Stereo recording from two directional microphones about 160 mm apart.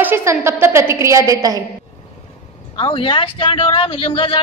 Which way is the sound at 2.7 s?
30° left (ahead or behind).